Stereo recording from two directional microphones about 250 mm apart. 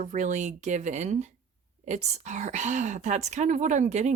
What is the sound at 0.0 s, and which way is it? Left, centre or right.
Speech, right.